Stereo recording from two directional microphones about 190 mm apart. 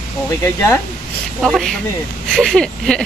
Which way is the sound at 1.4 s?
Centre (ahead or behind).